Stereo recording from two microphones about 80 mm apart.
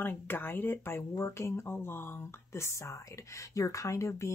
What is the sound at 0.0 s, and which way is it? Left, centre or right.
Speech, left.